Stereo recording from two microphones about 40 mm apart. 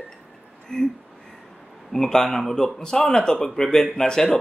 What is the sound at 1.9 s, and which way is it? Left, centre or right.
A man's voice, centre.